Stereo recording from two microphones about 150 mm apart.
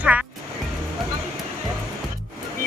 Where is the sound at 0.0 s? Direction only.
10° right (ahead or behind).